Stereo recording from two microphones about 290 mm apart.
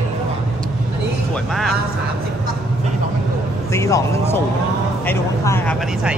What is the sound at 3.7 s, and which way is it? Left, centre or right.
Speech, centre.